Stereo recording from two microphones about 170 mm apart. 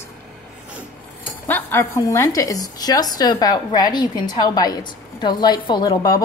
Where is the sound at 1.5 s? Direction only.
15° left (ahead or behind).